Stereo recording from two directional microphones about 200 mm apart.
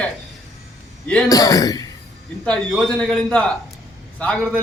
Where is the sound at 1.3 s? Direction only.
15° left (ahead or behind).